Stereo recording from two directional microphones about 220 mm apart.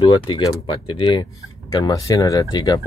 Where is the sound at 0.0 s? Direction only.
20° left (ahead or behind).